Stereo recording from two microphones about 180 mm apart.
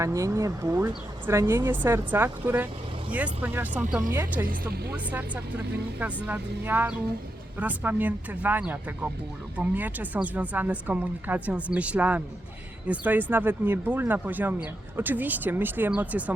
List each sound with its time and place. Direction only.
0.0 s speech: 15° right (ahead or behind)
4.4 s speech: 55° right (ahead or behind)
6.2 s speech: 10° right (ahead or behind)